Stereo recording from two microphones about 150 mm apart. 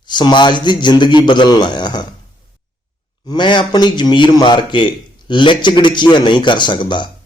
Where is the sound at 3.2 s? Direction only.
30° left (ahead or behind).